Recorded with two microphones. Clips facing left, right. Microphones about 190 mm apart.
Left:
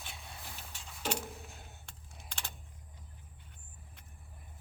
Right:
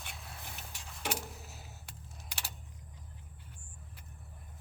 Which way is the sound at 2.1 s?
5° right (ahead or behind).